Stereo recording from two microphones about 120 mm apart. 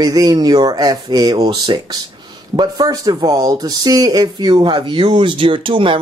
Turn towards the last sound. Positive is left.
turn(degrees=-45)  # may be behind; listen again after turning